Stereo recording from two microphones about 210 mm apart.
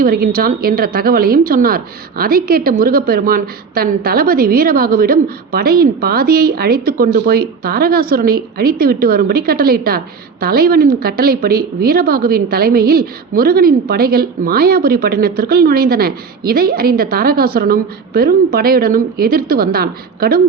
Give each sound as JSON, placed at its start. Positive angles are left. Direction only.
{"t": 0.0, "sound": "a woman's voice", "side_deg": -45}